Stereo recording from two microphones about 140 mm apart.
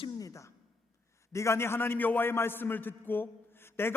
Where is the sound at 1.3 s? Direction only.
20° left (ahead or behind).